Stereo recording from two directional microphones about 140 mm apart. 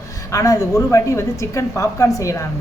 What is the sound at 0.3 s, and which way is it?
A woman's voice, 25° left (ahead or behind).